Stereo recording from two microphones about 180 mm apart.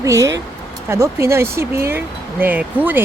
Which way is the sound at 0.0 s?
20° right (ahead or behind).